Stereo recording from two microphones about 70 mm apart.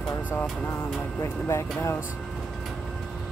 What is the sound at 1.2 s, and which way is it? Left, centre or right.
Speech, left.